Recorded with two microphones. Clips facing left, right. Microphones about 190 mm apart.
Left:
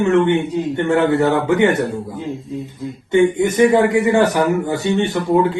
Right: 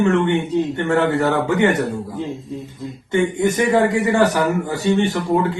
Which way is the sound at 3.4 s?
20° left (ahead or behind).